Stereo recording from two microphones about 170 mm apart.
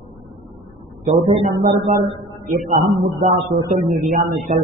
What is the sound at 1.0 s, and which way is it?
A man's voice, 35° right (ahead or behind).